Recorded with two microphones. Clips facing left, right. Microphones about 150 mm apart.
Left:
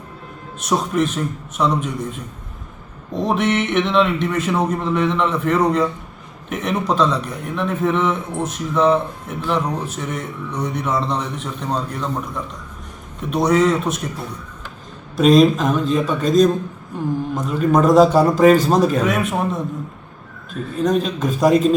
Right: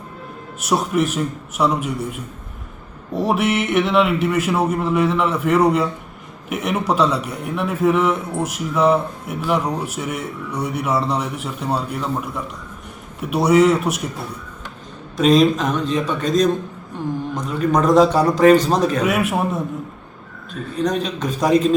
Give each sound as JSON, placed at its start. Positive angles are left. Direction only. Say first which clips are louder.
{"t": 0.6, "sound": "a man's voice", "louder": "even", "side_deg": -10}
{"t": 15.1, "sound": "a man's voice", "louder": "left 2 dB", "side_deg": 0}
{"t": 19.0, "sound": "a man's voice", "louder": "even", "side_deg": -10}
{"t": 20.5, "sound": "a man's voice", "louder": "left 2 dB", "side_deg": 5}